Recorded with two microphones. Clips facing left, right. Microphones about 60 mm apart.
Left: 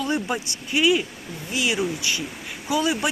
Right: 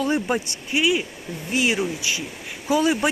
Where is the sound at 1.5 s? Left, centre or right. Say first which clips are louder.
Right 2 dB; right.